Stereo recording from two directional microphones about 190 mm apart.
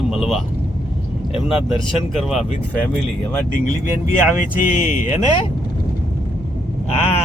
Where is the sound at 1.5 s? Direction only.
30° left (ahead or behind).